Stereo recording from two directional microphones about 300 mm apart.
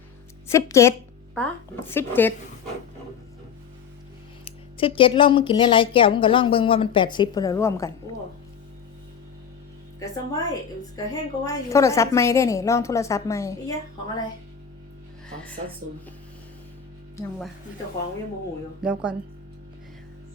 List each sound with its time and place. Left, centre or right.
0.5 s a woman's voice: centre
4.4 s a woman's voice: centre
10.0 s a woman's voice: centre
18.8 s speech: centre